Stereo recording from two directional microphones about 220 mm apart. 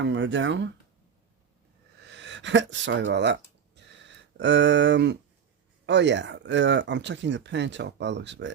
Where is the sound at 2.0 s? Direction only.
55° right (ahead or behind).